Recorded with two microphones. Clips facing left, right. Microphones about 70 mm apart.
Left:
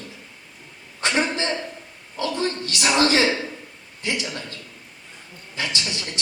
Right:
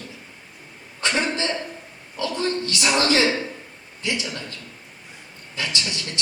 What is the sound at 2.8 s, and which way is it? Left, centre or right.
A man's voice, left.